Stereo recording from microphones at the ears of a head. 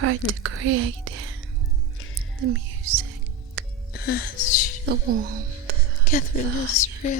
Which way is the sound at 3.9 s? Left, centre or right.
Left.